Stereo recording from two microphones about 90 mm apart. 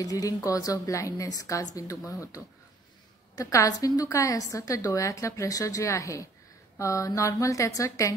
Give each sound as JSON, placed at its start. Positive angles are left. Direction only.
{"t": 0.0, "sound": "a woman's voice", "side_deg": 40}